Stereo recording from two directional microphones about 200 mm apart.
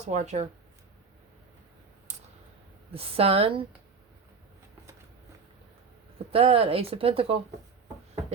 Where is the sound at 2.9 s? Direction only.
30° right (ahead or behind).